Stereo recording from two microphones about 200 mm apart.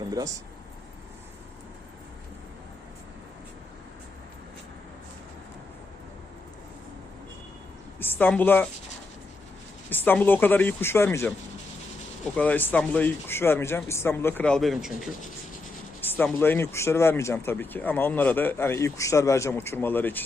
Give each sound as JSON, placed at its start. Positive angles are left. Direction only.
{"t": 0.1, "sound": "speech", "side_deg": -15}
{"t": 7.9, "sound": "speech", "side_deg": 10}
{"t": 9.9, "sound": "speech", "side_deg": 10}
{"t": 16.0, "sound": "speech", "side_deg": 10}